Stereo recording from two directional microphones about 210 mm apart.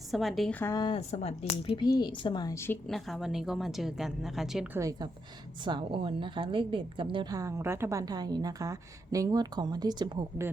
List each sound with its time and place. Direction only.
0.1 s a woman's voice: centre (ahead or behind)
0.6 s a woman's voice: 20° left (ahead or behind); by 10.5 s 15° right (ahead or behind)